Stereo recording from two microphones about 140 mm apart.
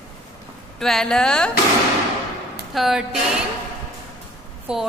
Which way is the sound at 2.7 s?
5° right (ahead or behind).